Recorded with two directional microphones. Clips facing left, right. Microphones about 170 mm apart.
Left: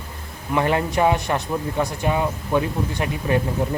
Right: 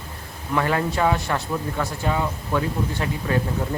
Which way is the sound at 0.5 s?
20° left (ahead or behind).